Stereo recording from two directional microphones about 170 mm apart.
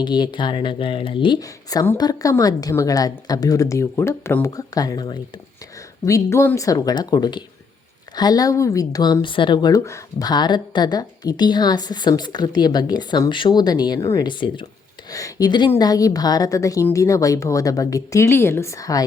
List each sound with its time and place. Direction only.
0.0 s speech: 25° left (ahead or behind)